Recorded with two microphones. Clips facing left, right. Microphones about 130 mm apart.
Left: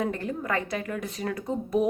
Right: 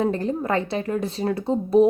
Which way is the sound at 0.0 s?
30° right (ahead or behind).